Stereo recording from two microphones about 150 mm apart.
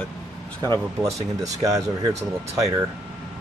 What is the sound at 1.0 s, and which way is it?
Speech, 20° right (ahead or behind).